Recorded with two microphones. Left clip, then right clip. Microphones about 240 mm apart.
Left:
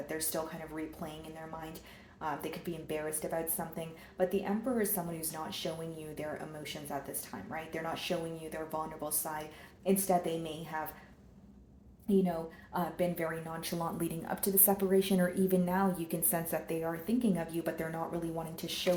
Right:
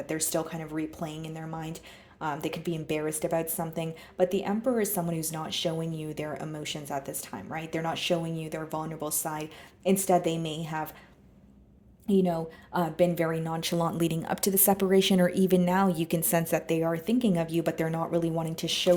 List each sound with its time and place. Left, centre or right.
0.1 s a woman's voice: right
12.0 s a woman's voice: right